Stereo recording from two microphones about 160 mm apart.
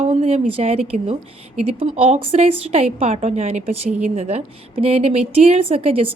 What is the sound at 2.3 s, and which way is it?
A woman's voice, 40° right (ahead or behind).